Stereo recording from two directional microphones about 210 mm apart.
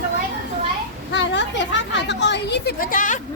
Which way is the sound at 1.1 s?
55° left (ahead or behind).